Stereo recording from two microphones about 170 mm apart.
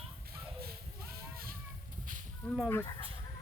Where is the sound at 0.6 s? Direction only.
65° right (ahead or behind).